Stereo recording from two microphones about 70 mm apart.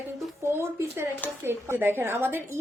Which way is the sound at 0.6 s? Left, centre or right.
Right.